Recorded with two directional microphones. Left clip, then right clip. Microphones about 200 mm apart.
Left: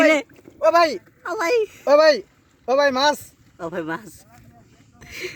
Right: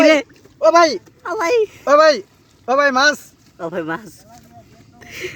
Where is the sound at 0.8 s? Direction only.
5° left (ahead or behind).